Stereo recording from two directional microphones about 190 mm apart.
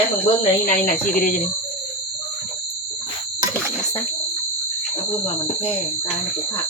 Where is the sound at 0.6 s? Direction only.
45° left (ahead or behind).